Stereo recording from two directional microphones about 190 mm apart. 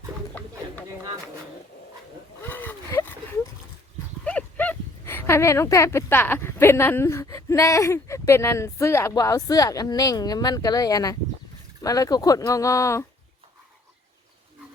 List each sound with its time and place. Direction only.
0.3 s a sound: 10° left (ahead or behind)
2.5 s gasp: 10° left (ahead or behind)
4.3 s speech: 10° left (ahead or behind)